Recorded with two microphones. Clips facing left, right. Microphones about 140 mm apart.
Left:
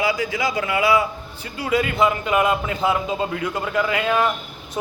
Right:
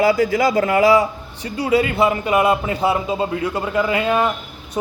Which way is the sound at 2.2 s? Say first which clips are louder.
Right 3 dB; 10° right (ahead or behind).